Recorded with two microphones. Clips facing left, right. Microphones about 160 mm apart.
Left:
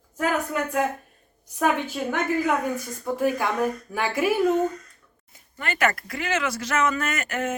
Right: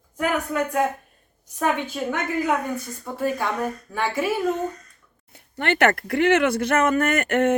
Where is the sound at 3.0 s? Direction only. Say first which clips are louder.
Left 2 dB; 10° left (ahead or behind).